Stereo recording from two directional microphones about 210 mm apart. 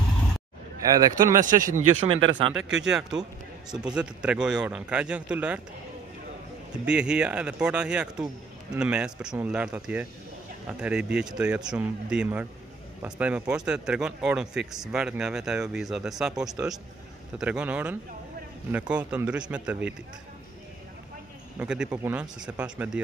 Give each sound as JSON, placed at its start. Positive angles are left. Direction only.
{"t": 0.9, "sound": "a man's voice", "side_deg": -15}
{"t": 1.8, "sound": "speech", "side_deg": -70}
{"t": 2.5, "sound": "speech", "side_deg": -5}
{"t": 6.7, "sound": "a man's voice", "side_deg": -5}
{"t": 21.5, "sound": "speech", "side_deg": -5}